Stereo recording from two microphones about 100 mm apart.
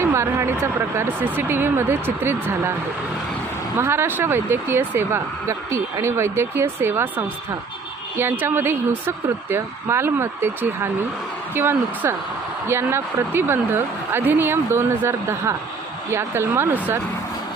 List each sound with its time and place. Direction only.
0.0 s speech: 25° right (ahead or behind)
3.8 s speech: 25° right (ahead or behind)